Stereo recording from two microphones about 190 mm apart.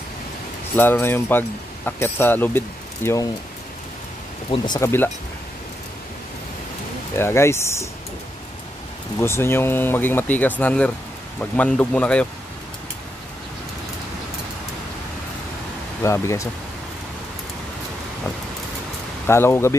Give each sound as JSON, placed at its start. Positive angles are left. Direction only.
{"t": 0.7, "sound": "speech", "side_deg": 10}
{"t": 4.5, "sound": "speech", "side_deg": 20}
{"t": 7.2, "sound": "speech", "side_deg": 15}
{"t": 9.2, "sound": "speech", "side_deg": 15}
{"t": 16.0, "sound": "speech", "side_deg": 15}
{"t": 19.2, "sound": "speech", "side_deg": 15}